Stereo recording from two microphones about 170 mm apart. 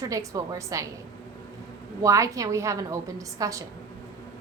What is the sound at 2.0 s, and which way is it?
A woman's voice, 20° right (ahead or behind).